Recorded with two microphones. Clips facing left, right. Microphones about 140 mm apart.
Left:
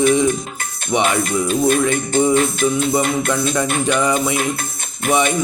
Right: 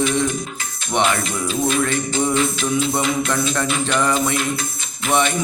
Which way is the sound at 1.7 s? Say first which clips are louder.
Left 4 dB; 55° left (ahead or behind).